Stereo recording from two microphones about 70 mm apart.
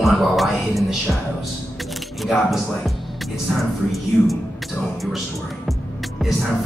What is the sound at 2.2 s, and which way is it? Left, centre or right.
Speech, centre.